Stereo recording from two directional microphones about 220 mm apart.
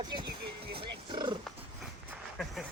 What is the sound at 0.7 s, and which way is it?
Wild animals, 20° right (ahead or behind).